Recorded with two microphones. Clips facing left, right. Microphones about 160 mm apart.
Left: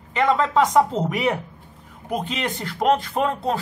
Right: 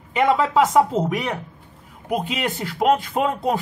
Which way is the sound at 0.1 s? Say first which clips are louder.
Right 1 dB; 10° right (ahead or behind).